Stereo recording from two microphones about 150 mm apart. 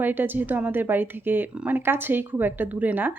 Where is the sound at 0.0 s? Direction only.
15° right (ahead or behind).